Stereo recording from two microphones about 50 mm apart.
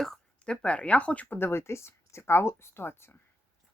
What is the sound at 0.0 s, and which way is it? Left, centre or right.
A woman's voice, centre.